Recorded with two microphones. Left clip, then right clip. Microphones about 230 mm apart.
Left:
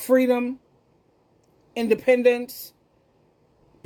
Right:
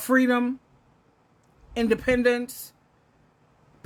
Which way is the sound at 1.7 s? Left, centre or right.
Centre.